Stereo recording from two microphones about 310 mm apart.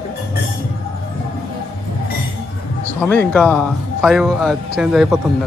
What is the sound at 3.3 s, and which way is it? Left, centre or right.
Speech, centre.